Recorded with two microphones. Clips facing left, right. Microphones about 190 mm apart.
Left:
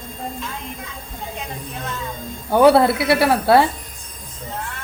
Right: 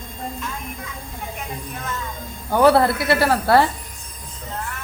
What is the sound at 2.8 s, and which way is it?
Speech, 20° left (ahead or behind).